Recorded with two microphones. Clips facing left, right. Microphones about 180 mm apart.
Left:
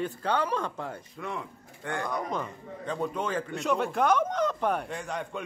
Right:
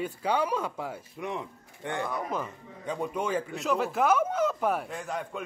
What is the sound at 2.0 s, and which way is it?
A man's voice, 5° right (ahead or behind).